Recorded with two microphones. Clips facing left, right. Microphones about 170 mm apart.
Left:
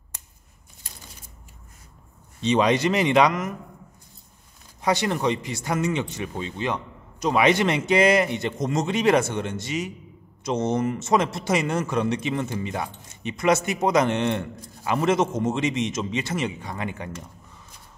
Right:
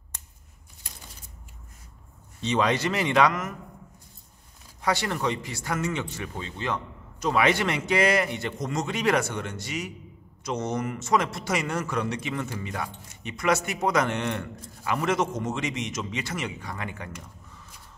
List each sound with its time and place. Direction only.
2.4 s speech: 20° left (ahead or behind)
4.8 s speech: 20° left (ahead or behind)